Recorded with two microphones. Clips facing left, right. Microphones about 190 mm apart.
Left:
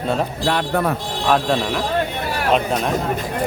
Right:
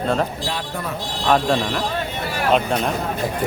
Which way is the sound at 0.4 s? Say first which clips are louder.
Left 8 dB; 60° left (ahead or behind).